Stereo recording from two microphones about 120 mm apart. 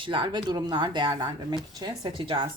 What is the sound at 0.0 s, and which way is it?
A woman's voice, 45° right (ahead or behind).